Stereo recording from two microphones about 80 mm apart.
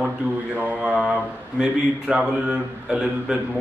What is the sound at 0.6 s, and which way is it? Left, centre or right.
Mantra, centre.